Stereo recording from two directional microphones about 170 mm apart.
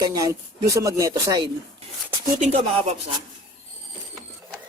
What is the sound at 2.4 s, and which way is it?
Speech, 45° right (ahead or behind).